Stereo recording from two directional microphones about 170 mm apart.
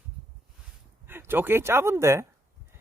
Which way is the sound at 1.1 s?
15° right (ahead or behind).